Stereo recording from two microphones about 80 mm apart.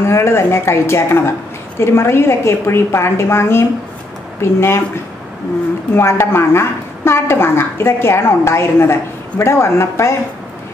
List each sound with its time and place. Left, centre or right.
0.0 s a woman's voice: left